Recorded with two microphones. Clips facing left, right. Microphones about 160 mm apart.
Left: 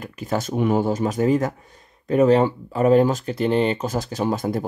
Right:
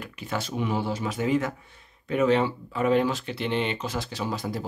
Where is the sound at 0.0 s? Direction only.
40° left (ahead or behind).